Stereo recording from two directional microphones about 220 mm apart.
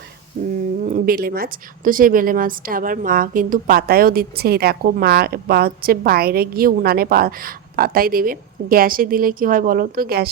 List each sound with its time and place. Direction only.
0.4 s a woman's voice: 40° right (ahead or behind)